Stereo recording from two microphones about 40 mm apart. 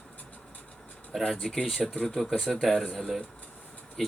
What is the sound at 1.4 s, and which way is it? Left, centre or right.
Speech, centre.